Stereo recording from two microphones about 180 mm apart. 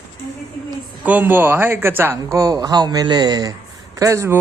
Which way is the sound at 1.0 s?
10° right (ahead or behind).